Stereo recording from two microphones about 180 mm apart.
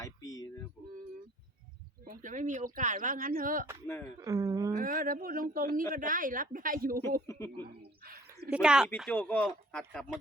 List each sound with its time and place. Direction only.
0.0 s music: 20° left (ahead or behind)
2.0 s speech: 45° right (ahead or behind)
3.8 s speech: 15° left (ahead or behind)
4.2 s a woman's voice: 20° right (ahead or behind)
4.7 s speech: 50° right (ahead or behind)
7.3 s speech: 15° left (ahead or behind)
8.0 s a sound: 55° right (ahead or behind)
8.4 s speech: 5° right (ahead or behind)
9.0 s speech: 5° left (ahead or behind)